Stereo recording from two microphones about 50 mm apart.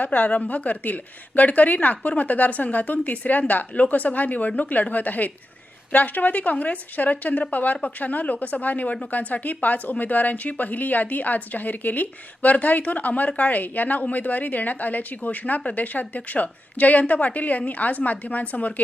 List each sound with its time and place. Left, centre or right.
0.0 s speech: left